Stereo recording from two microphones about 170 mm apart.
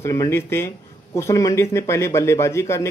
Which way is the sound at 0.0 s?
20° left (ahead or behind).